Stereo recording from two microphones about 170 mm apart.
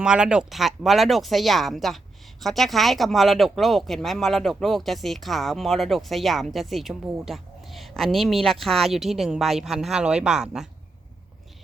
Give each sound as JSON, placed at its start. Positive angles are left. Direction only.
{"t": 0.0, "sound": "speech", "side_deg": -5}